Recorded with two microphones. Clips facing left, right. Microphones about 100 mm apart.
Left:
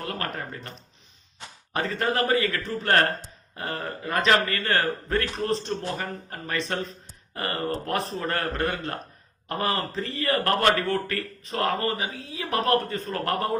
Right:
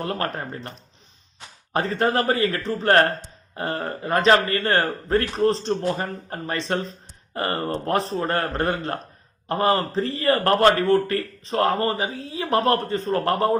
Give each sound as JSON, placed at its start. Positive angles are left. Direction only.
{"t": 0.0, "sound": "speech", "side_deg": -30}
{"t": 1.7, "sound": "speech", "side_deg": -35}